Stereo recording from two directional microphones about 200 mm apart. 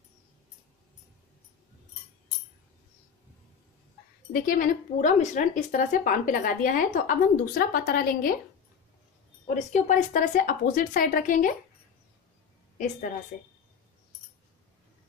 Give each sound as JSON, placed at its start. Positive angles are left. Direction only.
{"t": 4.3, "sound": "speech", "side_deg": 45}
{"t": 9.5, "sound": "speech", "side_deg": 35}